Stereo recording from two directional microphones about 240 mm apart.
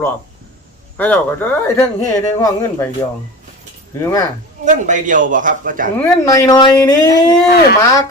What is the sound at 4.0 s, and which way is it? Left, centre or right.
Speech, centre.